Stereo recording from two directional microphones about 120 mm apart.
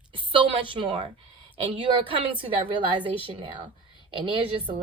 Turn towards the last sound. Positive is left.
turn(degrees=-50)  # may be behind; listen again after turning